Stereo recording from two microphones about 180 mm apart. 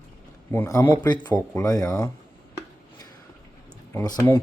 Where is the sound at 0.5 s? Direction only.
15° left (ahead or behind).